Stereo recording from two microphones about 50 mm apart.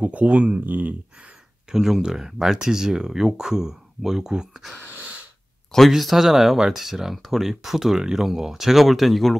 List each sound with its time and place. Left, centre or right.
0.0 s speech: right
0.7 s speech: right
1.7 s speech: centre
5.9 s speech: centre